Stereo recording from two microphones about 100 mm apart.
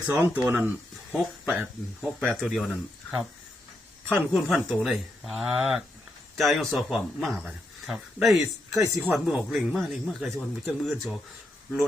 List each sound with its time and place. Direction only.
0.1 s speech: 20° right (ahead or behind)
1.1 s speech: centre (ahead or behind)
4.1 s speech: centre (ahead or behind)